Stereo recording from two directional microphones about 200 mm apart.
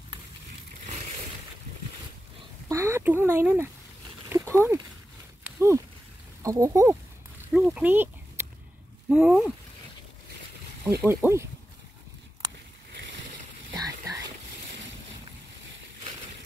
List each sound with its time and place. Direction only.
2.7 s speech: 15° right (ahead or behind)
4.3 s a sound: 15° right (ahead or behind)
5.6 s speech: 15° right (ahead or behind)
7.5 s speech: 5° right (ahead or behind)
11.1 s speech: 10° right (ahead or behind)
13.7 s a sound: 15° right (ahead or behind)